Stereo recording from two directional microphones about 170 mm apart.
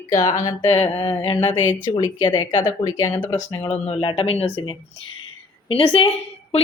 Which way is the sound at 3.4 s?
40° left (ahead or behind).